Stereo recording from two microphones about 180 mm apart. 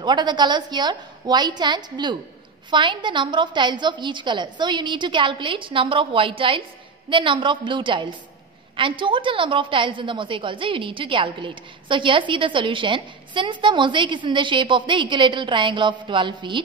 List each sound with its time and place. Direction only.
0.0 s a woman's voice: 25° right (ahead or behind)